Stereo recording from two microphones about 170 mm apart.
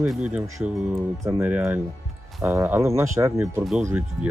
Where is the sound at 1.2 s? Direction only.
15° right (ahead or behind).